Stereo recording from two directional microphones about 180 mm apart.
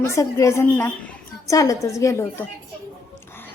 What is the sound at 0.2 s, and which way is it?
A woman's voice, 15° left (ahead or behind).